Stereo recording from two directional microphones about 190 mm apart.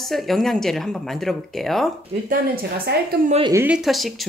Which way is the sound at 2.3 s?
55° right (ahead or behind).